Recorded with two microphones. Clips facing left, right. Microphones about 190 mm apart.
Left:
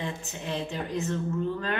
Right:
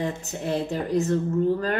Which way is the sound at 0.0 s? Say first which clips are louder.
Right 6 dB; 40° right (ahead or behind).